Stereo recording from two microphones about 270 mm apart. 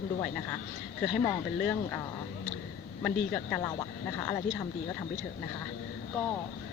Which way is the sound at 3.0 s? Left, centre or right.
Centre.